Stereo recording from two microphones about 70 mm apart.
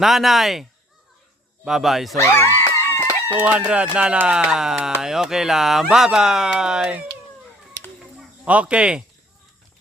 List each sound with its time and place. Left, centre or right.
0.0 s speech: centre
2.1 s screaming: left
3.3 s speech: centre
8.4 s speech: centre